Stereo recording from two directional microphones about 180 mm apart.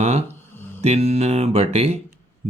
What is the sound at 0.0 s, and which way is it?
Speech, 35° right (ahead or behind).